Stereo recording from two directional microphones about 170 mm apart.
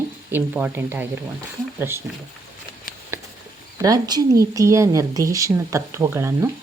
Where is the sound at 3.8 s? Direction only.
20° right (ahead or behind).